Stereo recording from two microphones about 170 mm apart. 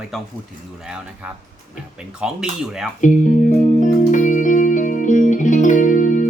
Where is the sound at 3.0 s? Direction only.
50° left (ahead or behind).